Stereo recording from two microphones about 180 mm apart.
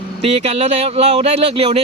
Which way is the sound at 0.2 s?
35° right (ahead or behind).